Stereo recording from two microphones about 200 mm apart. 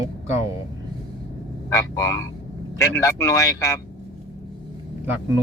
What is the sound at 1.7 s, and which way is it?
A man's voice, 15° left (ahead or behind).